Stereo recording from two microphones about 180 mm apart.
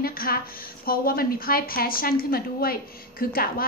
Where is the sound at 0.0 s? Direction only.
55° left (ahead or behind).